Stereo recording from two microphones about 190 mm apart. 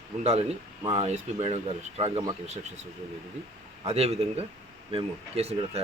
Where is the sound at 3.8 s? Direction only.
30° right (ahead or behind).